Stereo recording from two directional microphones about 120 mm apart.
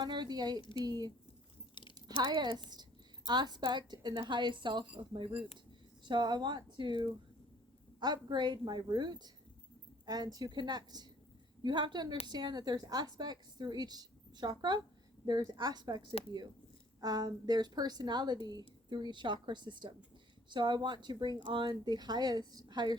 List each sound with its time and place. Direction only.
0.0 s a woman's voice: 35° right (ahead or behind)
0.6 s speech: 45° left (ahead or behind)
0.9 s a woman's voice: 30° right (ahead or behind)